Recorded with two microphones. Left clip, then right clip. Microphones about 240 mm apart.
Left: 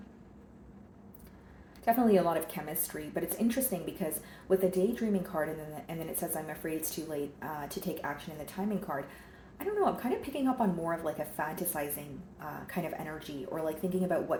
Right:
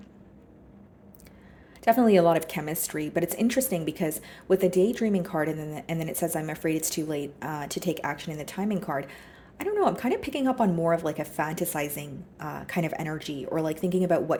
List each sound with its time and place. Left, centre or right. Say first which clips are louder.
1.8 s a woman's voice: right 7 dB; right